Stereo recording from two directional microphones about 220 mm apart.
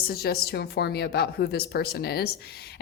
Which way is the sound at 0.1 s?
45° left (ahead or behind).